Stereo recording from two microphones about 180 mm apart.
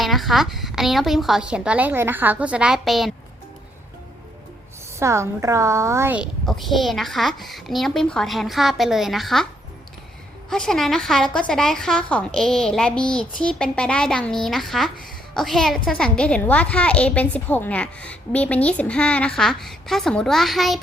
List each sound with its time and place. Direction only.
0.0 s a woman's voice: centre (ahead or behind)
4.9 s a woman's voice: 15° right (ahead or behind)
6.4 s a woman's voice: centre (ahead or behind)
10.5 s a woman's voice: centre (ahead or behind)